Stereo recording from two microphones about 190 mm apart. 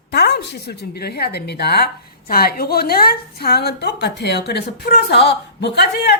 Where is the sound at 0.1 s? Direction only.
60° left (ahead or behind).